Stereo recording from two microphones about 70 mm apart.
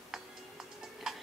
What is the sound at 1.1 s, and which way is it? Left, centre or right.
Tick-tock, centre.